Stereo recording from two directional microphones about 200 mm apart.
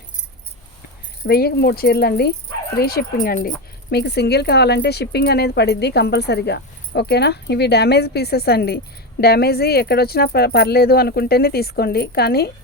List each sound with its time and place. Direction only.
1.3 s speech: 50° left (ahead or behind)